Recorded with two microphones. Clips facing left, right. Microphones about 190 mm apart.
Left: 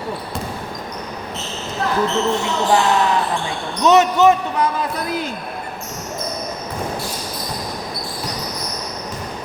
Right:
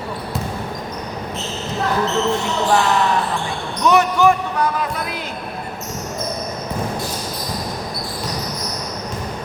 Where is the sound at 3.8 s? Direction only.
25° left (ahead or behind).